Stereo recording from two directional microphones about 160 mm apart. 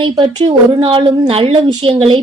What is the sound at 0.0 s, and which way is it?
A woman's voice, 30° right (ahead or behind).